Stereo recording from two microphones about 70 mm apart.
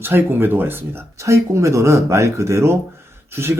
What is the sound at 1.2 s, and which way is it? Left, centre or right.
Speech, right.